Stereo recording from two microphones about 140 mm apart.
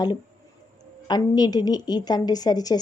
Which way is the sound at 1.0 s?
30° left (ahead or behind).